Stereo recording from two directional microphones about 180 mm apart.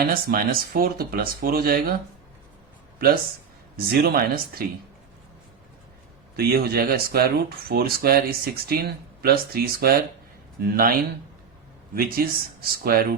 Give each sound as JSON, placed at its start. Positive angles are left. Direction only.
{"t": 0.1, "sound": "speech", "side_deg": -55}
{"t": 3.8, "sound": "speech", "side_deg": -60}
{"t": 6.3, "sound": "speech", "side_deg": -60}
{"t": 11.9, "sound": "speech", "side_deg": -55}